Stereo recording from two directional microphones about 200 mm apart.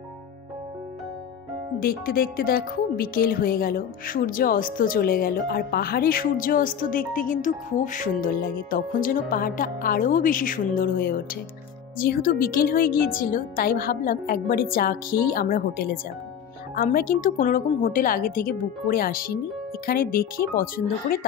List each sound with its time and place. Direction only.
1.8 s speech: 50° left (ahead or behind)